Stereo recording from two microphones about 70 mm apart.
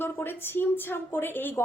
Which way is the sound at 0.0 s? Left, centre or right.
Left.